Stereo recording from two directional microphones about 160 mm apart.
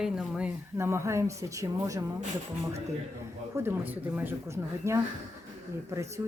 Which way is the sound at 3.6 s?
10° right (ahead or behind).